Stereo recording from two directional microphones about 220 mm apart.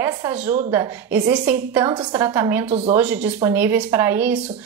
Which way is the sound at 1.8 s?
20° right (ahead or behind).